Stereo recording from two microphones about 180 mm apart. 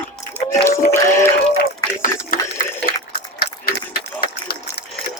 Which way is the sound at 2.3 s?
50° left (ahead or behind).